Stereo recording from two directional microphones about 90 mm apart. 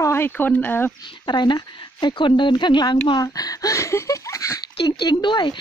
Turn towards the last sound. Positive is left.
turn(degrees=55)  # may be behind; listen again after turning